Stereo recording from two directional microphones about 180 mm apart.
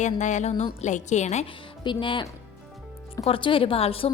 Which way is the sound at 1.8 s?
25° left (ahead or behind).